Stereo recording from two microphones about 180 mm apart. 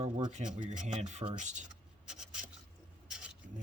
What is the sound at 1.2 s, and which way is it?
Speech, 30° right (ahead or behind).